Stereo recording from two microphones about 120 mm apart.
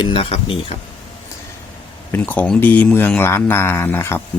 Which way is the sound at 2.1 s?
15° left (ahead or behind).